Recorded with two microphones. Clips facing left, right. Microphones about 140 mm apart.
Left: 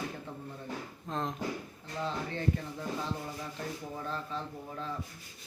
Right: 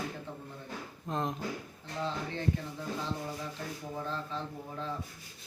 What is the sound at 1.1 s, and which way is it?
Speech, 5° right (ahead or behind).